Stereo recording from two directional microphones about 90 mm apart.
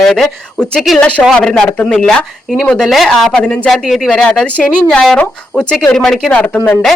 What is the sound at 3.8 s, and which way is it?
Speech, 5° right (ahead or behind).